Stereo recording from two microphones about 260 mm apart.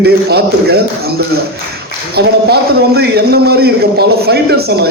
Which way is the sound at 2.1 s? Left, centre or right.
Right.